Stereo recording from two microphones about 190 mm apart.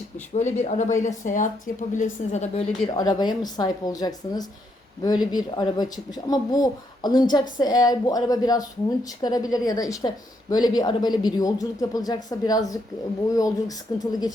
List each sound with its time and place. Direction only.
0.3 s a woman's voice: 40° left (ahead or behind)
2.9 s speech: 20° left (ahead or behind)